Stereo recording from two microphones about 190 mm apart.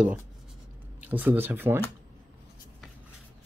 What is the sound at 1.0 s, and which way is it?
Speech, 10° right (ahead or behind).